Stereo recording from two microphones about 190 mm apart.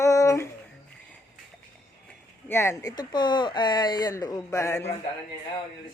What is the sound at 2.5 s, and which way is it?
Speech, 15° left (ahead or behind).